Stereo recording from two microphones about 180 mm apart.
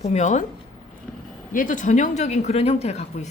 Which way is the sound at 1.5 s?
45° left (ahead or behind).